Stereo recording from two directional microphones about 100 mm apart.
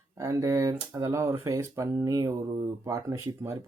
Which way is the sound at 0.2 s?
35° right (ahead or behind).